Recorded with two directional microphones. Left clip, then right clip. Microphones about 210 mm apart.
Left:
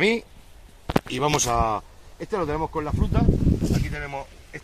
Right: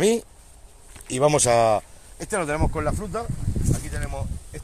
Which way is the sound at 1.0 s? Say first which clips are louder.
Right 6 dB; 45° right (ahead or behind).